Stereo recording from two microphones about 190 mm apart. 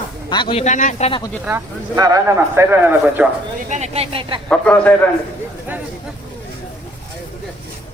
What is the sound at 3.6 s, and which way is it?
Speech, 35° right (ahead or behind).